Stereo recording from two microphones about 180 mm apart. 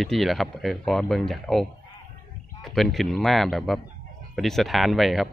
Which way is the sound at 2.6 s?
Centre (ahead or behind).